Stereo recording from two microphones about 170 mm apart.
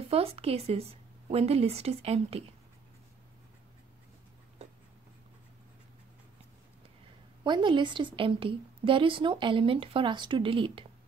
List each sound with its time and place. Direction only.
0.1 s a woman's voice: 35° right (ahead or behind)
7.4 s a woman's voice: 25° right (ahead or behind)